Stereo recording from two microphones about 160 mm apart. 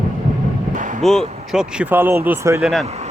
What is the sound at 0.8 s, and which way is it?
Music, 50° right (ahead or behind).